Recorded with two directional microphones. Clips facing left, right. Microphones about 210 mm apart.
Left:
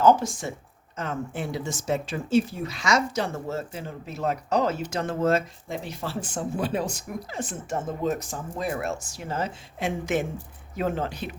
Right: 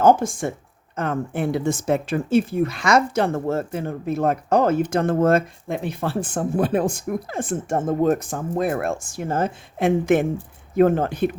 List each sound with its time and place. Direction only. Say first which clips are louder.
0.0 s speech: right 3 dB; 50° right (ahead or behind)